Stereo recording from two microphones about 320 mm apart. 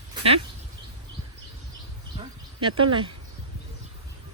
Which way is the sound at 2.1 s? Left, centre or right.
Centre.